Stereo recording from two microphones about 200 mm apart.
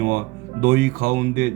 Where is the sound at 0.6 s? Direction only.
50° right (ahead or behind).